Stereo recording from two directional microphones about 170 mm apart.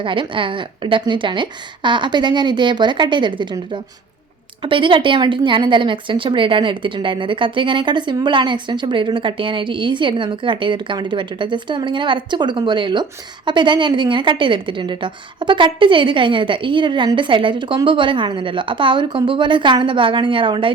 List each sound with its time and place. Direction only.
0.0 s a woman's voice: 30° right (ahead or behind)